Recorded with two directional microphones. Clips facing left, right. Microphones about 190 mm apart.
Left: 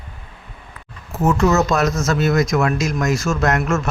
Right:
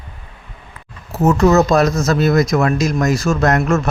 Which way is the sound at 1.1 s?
40° right (ahead or behind).